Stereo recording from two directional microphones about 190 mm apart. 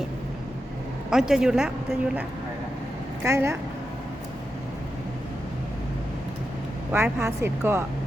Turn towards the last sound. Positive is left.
turn(degrees=-15)  # may be behind; listen again after turning